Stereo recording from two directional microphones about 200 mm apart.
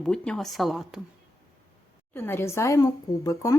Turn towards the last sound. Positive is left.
turn(degrees=15)  # may be behind; listen again after turning